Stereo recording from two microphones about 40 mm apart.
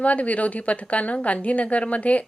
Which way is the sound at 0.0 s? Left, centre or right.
Left.